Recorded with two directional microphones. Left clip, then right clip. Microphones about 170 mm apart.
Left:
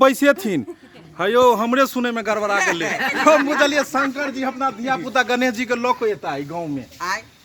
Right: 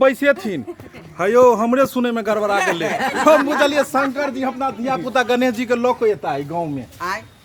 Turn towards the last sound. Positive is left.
turn(degrees=10)  # may be behind; listen again after turning